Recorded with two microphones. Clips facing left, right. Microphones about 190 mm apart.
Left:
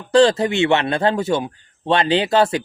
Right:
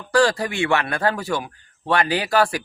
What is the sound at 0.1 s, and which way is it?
Speech, 25° left (ahead or behind).